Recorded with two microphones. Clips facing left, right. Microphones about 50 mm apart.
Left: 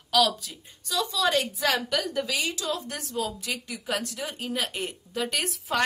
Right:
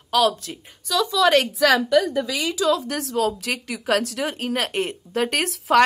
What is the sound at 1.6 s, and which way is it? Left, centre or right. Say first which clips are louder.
Speech: right 9 dB; right.